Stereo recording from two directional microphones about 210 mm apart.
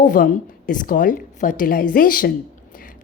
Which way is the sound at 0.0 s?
40° left (ahead or behind).